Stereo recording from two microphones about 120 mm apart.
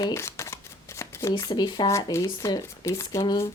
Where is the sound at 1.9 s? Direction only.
25° left (ahead or behind).